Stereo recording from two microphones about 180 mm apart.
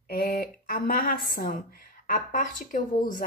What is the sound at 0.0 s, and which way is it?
A woman's voice, 55° left (ahead or behind).